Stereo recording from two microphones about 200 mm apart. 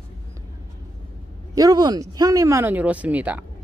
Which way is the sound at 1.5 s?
20° right (ahead or behind).